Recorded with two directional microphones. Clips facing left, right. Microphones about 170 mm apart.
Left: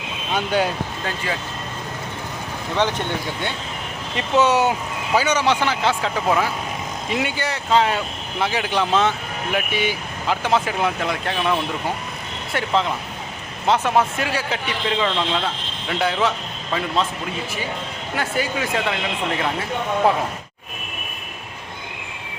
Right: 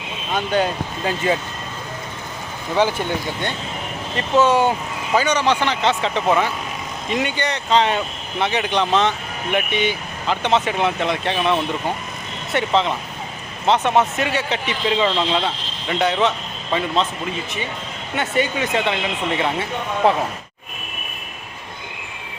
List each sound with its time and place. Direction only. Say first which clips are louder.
0.3 s speech: right 1 dB; 10° left (ahead or behind)
1.0 s speech: right 8 dB; 25° right (ahead or behind)
2.7 s speech: right 3 dB; 10° right (ahead or behind)
4.2 s speech: right 1 dB; 10° left (ahead or behind)
12.5 s speech: right 2 dB; centre (ahead or behind)
18.2 s speech: right 3 dB; centre (ahead or behind)